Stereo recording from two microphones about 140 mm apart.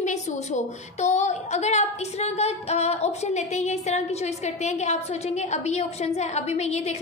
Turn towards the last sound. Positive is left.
turn(degrees=50)  # may be behind; listen again after turning